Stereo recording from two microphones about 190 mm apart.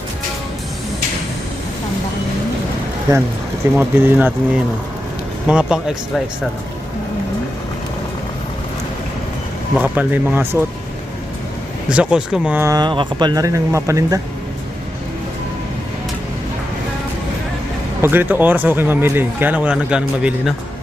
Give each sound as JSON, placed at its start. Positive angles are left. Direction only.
{"t": 3.8, "sound": "speech", "side_deg": -10}
{"t": 9.7, "sound": "speech", "side_deg": -10}
{"t": 11.9, "sound": "speech", "side_deg": -5}
{"t": 18.0, "sound": "speech", "side_deg": -10}